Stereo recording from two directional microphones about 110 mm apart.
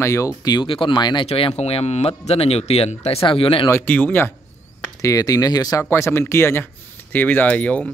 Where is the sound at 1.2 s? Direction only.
60° left (ahead or behind); by 3.2 s 80° left.